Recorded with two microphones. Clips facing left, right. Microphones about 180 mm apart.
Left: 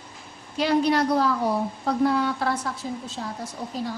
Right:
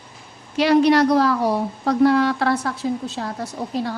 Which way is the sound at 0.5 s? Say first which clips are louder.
Right 6 dB; 80° right.